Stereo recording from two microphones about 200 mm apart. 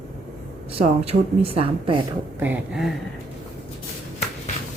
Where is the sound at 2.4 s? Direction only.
5° right (ahead or behind).